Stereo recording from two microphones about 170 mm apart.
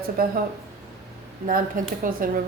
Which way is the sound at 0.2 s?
60° right (ahead or behind).